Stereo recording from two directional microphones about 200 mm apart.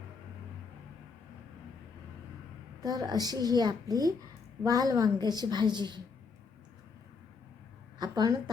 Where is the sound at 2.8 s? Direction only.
20° right (ahead or behind).